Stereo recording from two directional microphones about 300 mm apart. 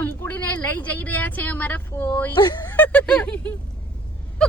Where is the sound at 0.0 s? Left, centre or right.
Centre.